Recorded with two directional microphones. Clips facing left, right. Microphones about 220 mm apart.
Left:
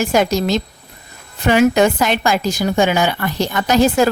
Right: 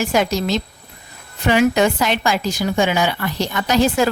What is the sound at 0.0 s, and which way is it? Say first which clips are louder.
A woman's voice: left 3 dB; 45° left (ahead or behind).